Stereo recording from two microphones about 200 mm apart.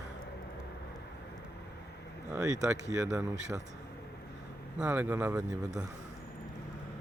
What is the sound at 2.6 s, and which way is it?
Speech, 15° right (ahead or behind).